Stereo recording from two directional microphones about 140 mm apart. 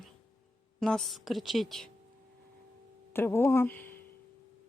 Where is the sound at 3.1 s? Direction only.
15° left (ahead or behind).